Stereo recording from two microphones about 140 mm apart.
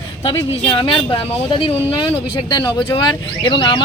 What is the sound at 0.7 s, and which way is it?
Speech, 40° left (ahead or behind).